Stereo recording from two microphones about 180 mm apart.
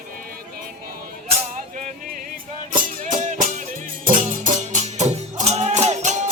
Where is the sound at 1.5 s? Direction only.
45° right (ahead or behind).